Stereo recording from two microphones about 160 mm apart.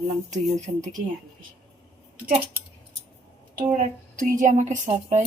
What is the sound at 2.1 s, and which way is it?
Speech, 65° right (ahead or behind).